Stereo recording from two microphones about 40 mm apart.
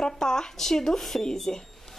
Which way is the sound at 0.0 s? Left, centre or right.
Centre.